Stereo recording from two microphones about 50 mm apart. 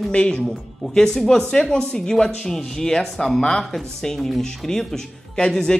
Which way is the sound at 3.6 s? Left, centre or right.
Centre.